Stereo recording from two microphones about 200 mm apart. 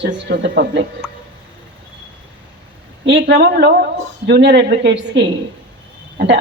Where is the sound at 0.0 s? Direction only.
60° right (ahead or behind).